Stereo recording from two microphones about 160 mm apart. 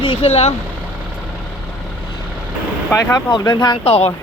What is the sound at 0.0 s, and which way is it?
Speech, 35° left (ahead or behind).